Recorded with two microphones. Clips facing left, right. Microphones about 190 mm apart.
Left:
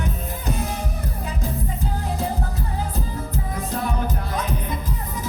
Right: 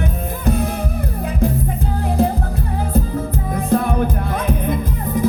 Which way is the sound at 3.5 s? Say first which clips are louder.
Right 10 dB; 55° right (ahead or behind).